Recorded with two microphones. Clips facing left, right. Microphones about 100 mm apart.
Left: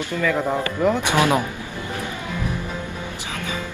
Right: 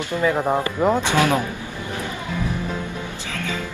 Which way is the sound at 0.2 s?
25° right (ahead or behind).